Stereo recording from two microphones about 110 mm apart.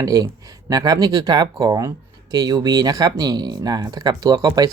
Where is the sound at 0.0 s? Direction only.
35° right (ahead or behind).